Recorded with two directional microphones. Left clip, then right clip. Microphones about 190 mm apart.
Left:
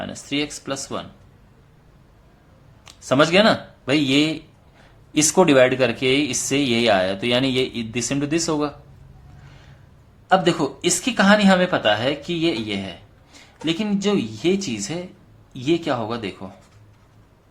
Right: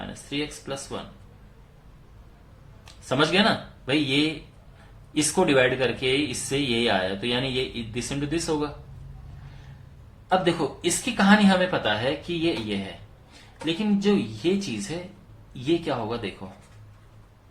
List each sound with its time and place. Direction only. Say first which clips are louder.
0.1 s speech: left 6 dB; 50° left (ahead or behind)
2.8 s speech: left 6 dB; 45° left (ahead or behind)
10.2 s speech: left 5 dB; 50° left (ahead or behind)